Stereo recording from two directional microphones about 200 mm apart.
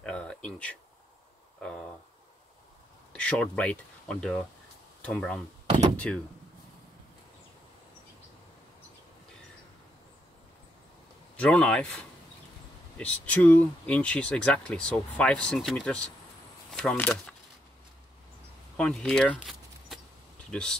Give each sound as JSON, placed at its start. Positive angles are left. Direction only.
{"t": 0.0, "sound": "a sound", "side_deg": 5}
{"t": 3.1, "sound": "speech", "side_deg": 5}
{"t": 5.7, "sound": "speech", "side_deg": -30}
{"t": 11.3, "sound": "speech", "side_deg": 5}
{"t": 18.8, "sound": "speech", "side_deg": 5}